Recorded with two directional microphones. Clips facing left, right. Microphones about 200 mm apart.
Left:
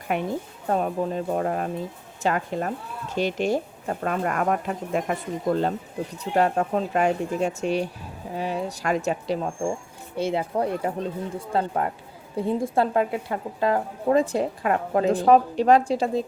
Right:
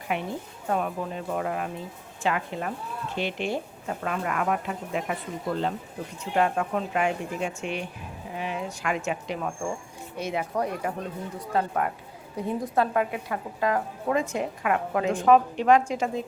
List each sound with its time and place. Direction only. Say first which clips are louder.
0.1 s speech: left 4 dB; 45° left (ahead or behind)
0.7 s speech: left 4 dB; 35° left (ahead or behind)